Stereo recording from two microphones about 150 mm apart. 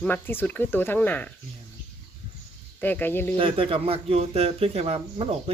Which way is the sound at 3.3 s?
35° right (ahead or behind).